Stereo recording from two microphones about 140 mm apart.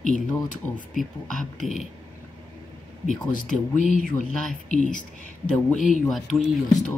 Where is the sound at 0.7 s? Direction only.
Centre (ahead or behind).